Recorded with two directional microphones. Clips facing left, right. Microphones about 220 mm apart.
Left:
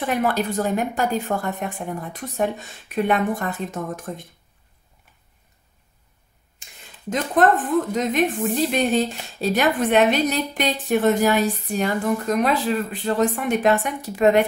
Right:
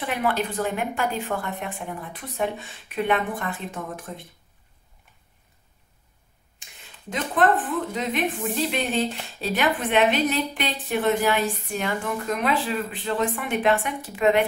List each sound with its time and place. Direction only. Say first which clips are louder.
0.0 s a woman's voice: left 3 dB; 40° left (ahead or behind)
7.4 s a woman's voice: left 4 dB; 40° left (ahead or behind)